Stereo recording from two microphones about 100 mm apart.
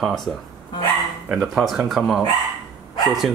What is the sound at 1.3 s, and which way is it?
Speech, centre (ahead or behind).